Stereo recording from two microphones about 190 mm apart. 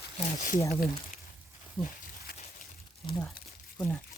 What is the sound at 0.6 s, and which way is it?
Speech, 15° left (ahead or behind).